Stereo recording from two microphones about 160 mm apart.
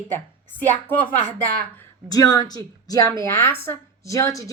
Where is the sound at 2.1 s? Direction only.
25° left (ahead or behind).